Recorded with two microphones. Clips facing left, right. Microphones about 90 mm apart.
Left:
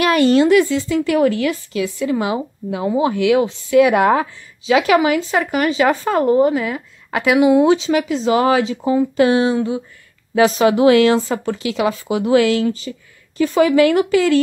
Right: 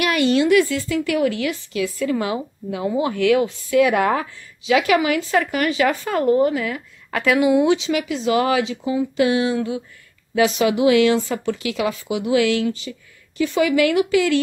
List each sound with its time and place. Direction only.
0.0 s speech: 35° left (ahead or behind)
1.8 s a woman's voice: 20° left (ahead or behind); by 14.4 s 35° left (ahead or behind)